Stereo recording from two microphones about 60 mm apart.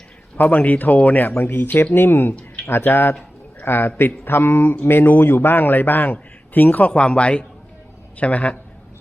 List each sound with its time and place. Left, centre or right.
0.3 s a man's voice: left